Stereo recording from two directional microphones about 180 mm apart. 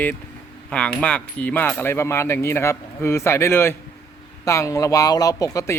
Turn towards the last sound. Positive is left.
turn(degrees=20)  # may be behind; listen again after turning